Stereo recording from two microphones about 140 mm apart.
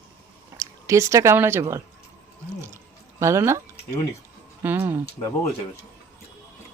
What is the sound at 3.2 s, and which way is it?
Speech, 20° right (ahead or behind).